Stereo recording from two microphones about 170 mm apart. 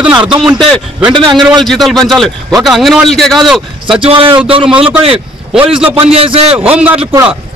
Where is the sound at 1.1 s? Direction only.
25° right (ahead or behind).